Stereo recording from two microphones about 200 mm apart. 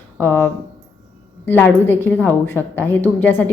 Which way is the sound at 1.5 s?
10° left (ahead or behind).